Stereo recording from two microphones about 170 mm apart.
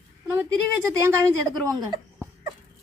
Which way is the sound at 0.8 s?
20° right (ahead or behind).